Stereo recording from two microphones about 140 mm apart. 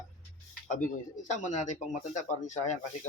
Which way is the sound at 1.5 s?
60° left (ahead or behind).